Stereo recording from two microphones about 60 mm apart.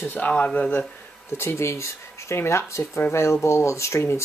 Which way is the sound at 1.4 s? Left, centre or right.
Left.